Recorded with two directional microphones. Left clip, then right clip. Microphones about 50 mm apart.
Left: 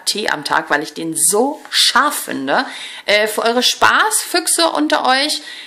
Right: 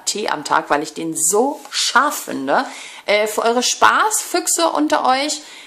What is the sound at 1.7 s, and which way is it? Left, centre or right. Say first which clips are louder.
Speech: left 6 dB; right.